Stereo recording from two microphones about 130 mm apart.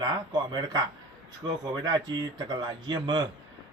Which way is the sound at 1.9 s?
35° right (ahead or behind).